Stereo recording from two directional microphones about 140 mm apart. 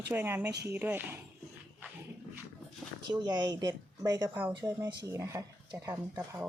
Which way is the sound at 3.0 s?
30° right (ahead or behind).